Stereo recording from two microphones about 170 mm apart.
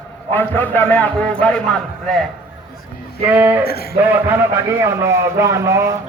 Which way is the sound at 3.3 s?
10° right (ahead or behind).